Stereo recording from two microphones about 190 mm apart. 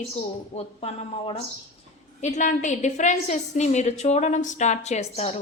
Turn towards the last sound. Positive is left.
turn(degrees=35)  # may be behind; listen again after turning